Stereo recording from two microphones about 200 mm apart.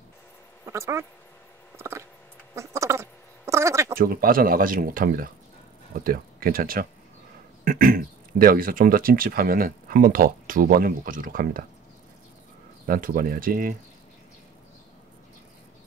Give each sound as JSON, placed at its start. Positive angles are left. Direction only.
{"t": 0.7, "sound": "speech", "side_deg": -15}
{"t": 1.8, "sound": "a sound", "side_deg": -15}
{"t": 4.0, "sound": "speech", "side_deg": -45}
{"t": 12.8, "sound": "speech", "side_deg": -45}